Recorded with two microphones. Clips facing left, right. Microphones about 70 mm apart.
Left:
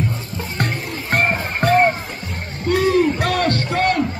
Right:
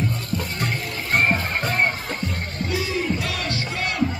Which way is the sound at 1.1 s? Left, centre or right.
Left.